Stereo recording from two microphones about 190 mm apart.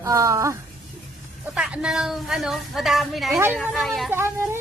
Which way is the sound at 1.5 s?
5° right (ahead or behind).